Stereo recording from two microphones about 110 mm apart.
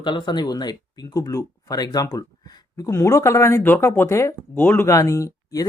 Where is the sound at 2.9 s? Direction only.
25° left (ahead or behind).